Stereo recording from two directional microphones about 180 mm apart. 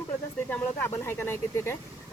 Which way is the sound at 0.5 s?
10° left (ahead or behind).